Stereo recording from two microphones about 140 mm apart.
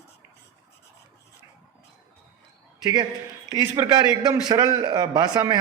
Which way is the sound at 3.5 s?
25° right (ahead or behind).